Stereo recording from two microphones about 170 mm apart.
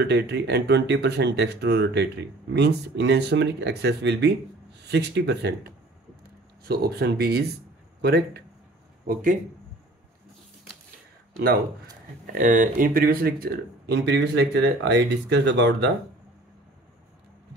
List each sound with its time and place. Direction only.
0.0 s speech: 80° right
6.7 s speech: 70° right (ahead or behind)
9.0 s speech: 55° right (ahead or behind)
12.3 s speech: 50° right (ahead or behind); by 15.9 s 90° right